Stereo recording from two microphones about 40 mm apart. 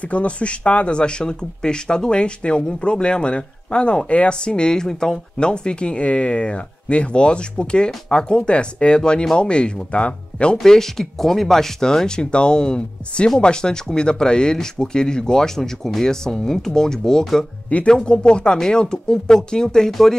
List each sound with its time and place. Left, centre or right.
0.0 s speech: left; by 5.2 s centre
5.4 s speech: left
10.6 s speech: centre
12.2 s speech: left
17.8 s speech: left
19.9 s speech: centre